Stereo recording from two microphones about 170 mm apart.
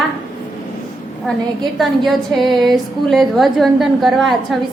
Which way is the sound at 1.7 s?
Centre (ahead or behind).